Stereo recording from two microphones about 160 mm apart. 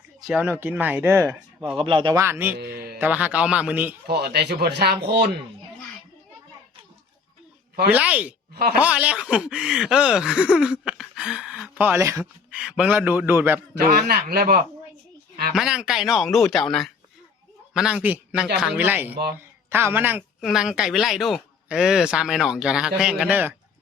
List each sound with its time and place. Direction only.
0.2 s speech: centre (ahead or behind)
0.4 s a man's voice: 15° right (ahead or behind)
1.7 s speech: 30° right (ahead or behind)
2.2 s a man's voice: 15° right (ahead or behind)
2.6 s a man's voice: 75° right (ahead or behind)
3.0 s a man's voice: 10° right (ahead or behind)
4.0 s speech: 85° right
7.9 s a man's voice: 10° right (ahead or behind)
12.2 s a man's voice: 5° right (ahead or behind)
13.7 s a man's voice: 75° right (ahead or behind)
15.5 s a man's voice: 5° right (ahead or behind)